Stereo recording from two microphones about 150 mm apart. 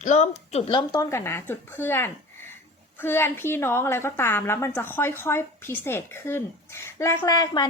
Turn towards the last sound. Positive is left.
turn(degrees=25)  # may be behind; listen again after turning